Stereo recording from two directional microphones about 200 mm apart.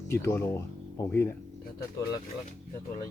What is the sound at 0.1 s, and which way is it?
Speech, 15° left (ahead or behind).